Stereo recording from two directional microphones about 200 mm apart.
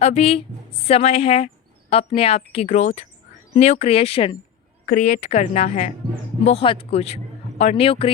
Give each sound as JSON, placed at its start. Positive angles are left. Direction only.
{"t": 0.0, "sound": "a woman's voice", "side_deg": 30}
{"t": 4.9, "sound": "a woman's voice", "side_deg": 40}